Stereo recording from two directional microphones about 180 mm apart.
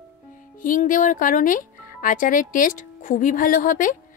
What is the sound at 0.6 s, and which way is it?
Speech, 50° left (ahead or behind).